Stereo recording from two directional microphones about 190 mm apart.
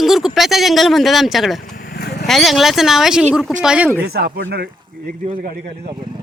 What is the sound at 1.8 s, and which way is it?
Vehicle, 55° left (ahead or behind).